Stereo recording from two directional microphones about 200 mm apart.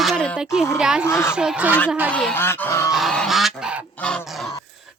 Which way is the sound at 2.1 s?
5° left (ahead or behind).